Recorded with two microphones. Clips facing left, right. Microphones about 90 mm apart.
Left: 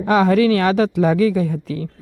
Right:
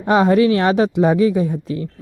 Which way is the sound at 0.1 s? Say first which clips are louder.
Right 1 dB; 30° right (ahead or behind).